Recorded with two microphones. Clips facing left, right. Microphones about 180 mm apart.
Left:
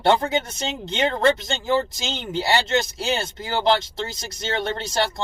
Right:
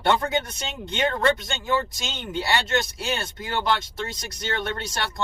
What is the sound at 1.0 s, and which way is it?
Speech, 25° left (ahead or behind).